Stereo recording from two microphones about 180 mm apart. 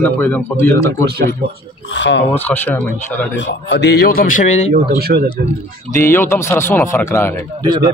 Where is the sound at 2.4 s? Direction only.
10° left (ahead or behind).